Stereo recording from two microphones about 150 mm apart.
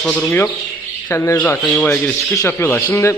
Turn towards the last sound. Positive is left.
turn(degrees=15)  # may be behind; listen again after turning